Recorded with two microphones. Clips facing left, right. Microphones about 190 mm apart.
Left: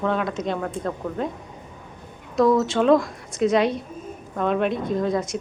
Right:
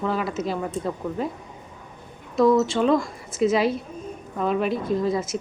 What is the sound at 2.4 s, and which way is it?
A woman's voice, centre (ahead or behind).